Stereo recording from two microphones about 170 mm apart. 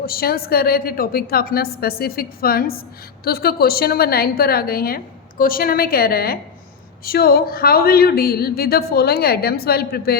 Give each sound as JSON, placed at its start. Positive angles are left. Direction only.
{"t": 0.0, "sound": "a woman's voice", "side_deg": 60}